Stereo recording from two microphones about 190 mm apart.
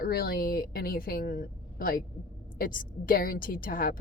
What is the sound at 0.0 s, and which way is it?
Speech, 50° left (ahead or behind).